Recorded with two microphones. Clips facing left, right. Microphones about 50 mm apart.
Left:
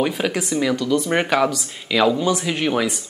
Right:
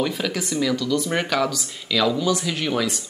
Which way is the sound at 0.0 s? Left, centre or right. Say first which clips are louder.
Left 3 dB; left.